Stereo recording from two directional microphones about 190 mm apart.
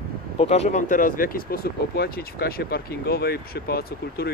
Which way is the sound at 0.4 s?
35° left (ahead or behind).